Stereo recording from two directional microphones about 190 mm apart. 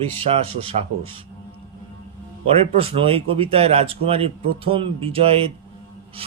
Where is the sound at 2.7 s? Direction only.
30° right (ahead or behind).